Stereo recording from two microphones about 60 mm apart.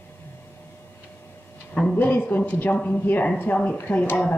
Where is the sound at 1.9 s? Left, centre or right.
Left.